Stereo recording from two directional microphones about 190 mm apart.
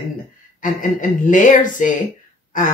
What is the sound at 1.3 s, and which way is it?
Speech, 45° left (ahead or behind).